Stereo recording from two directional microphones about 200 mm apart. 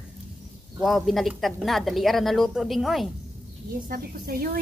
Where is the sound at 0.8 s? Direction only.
Centre (ahead or behind).